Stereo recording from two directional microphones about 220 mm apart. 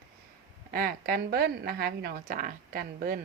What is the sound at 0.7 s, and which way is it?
A woman's voice, 40° right (ahead or behind).